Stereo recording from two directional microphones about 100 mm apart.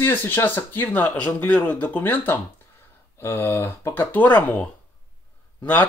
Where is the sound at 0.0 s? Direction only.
20° left (ahead or behind).